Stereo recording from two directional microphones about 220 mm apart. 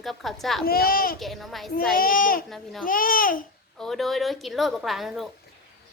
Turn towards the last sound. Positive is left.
turn(degrees=0)  # may be behind; listen again after turning